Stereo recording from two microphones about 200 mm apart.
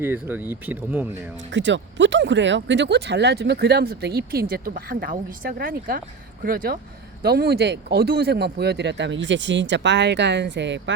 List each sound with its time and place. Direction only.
0.0 s speech: 10° right (ahead or behind)
1.5 s speech: 65° right (ahead or behind)